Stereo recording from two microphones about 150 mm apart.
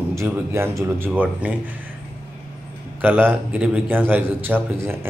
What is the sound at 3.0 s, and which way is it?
A man's voice, 10° right (ahead or behind).